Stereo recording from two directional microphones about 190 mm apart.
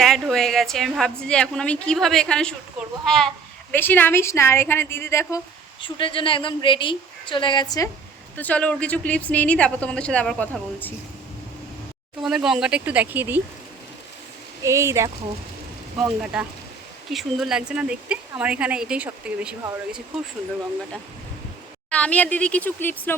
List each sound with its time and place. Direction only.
0.0 s a woman's voice: centre (ahead or behind)
5.8 s a woman's voice: 25° left (ahead or behind)
8.4 s a woman's voice: 5° left (ahead or behind)
12.2 s speech: centre (ahead or behind)
14.6 s speech: 15° right (ahead or behind)
16.2 s a woman's voice: 5° right (ahead or behind)
21.8 s a woman's voice: 5° left (ahead or behind)